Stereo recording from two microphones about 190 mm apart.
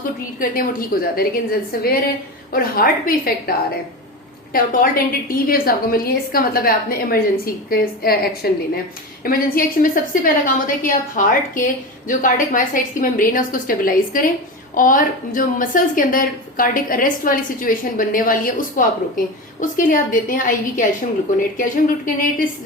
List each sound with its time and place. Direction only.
0.3 s a woman's voice: 50° left (ahead or behind)
4.5 s a woman's voice: 50° left (ahead or behind)